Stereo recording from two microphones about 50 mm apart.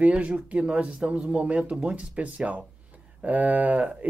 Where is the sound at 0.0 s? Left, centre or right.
Right.